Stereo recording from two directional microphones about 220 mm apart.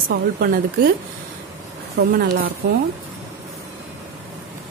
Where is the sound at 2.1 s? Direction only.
50° right (ahead or behind).